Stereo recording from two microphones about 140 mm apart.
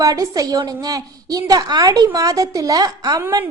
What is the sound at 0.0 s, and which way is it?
A woman's voice, 25° right (ahead or behind).